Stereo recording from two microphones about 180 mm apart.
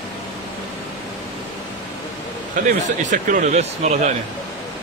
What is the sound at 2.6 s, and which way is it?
Speech, 45° right (ahead or behind).